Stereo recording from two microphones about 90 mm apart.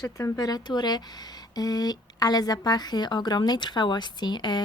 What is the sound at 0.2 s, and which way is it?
A woman's voice, 40° left (ahead or behind).